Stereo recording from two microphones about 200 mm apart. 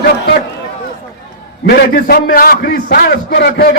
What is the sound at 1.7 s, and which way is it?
A man's voice, 55° left (ahead or behind).